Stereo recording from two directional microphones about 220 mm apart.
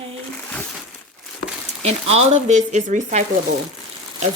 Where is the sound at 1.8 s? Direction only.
30° right (ahead or behind).